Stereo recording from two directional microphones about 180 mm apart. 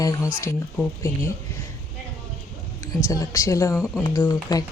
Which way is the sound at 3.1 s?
20° left (ahead or behind).